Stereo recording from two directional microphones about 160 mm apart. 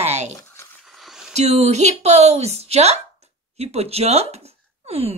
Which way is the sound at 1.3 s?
45° right (ahead or behind).